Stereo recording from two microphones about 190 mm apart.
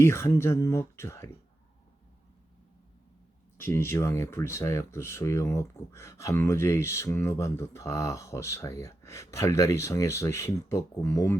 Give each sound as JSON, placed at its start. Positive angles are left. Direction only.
{"t": 0.0, "sound": "speech", "side_deg": 15}
{"t": 3.6, "sound": "speech", "side_deg": 15}